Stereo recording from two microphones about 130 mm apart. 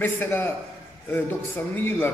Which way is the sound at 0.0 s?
15° left (ahead or behind).